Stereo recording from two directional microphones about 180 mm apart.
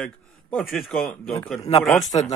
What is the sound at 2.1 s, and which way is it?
Speech, 30° left (ahead or behind).